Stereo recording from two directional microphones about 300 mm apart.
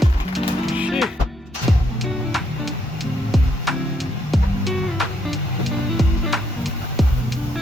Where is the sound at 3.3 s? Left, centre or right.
Centre.